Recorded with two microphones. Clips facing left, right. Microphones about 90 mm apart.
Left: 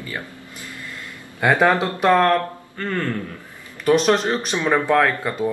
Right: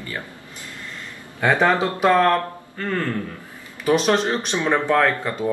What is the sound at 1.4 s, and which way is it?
A man's voice, centre (ahead or behind).